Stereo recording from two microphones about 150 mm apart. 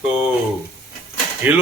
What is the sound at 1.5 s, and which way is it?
Speech, 10° right (ahead or behind).